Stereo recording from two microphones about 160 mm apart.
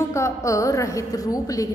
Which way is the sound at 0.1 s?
20° left (ahead or behind).